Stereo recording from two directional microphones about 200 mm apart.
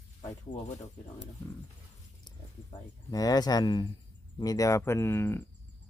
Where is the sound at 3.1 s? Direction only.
20° left (ahead or behind).